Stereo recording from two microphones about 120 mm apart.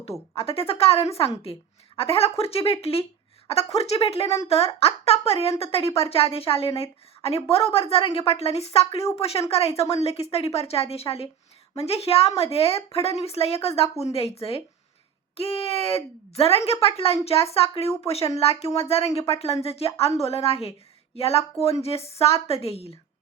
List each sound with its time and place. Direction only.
0.3 s a woman's voice: 50° left (ahead or behind)